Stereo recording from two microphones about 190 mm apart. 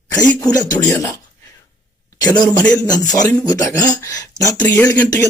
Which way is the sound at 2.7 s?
20° left (ahead or behind).